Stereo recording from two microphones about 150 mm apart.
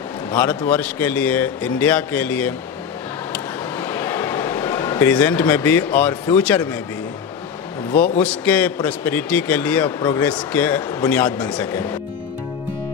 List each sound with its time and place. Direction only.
0.3 s a man's voice: 10° left (ahead or behind)
3.3 s a sound: 15° left (ahead or behind)
5.0 s a man's voice: 10° left (ahead or behind)
8.2 s a man's voice: 10° left (ahead or behind)
9.9 s speech: 25° left (ahead or behind)
10.2 s a man's voice: 10° left (ahead or behind)